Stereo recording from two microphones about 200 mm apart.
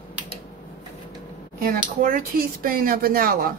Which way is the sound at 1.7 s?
45° right (ahead or behind).